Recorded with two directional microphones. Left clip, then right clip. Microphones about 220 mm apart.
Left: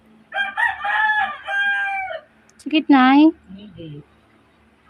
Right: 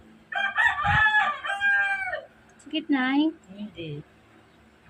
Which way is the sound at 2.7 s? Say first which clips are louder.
Left 12 dB; 50° left (ahead or behind).